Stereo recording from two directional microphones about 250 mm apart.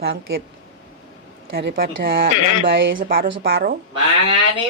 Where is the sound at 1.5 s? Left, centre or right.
Right.